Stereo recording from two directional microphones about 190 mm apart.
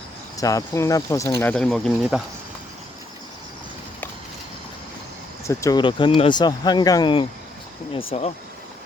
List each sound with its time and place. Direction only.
0.3 s speech: 15° left (ahead or behind); by 2.2 s centre (ahead or behind)
5.5 s speech: 15° left (ahead or behind); by 8.3 s 30° left (ahead or behind)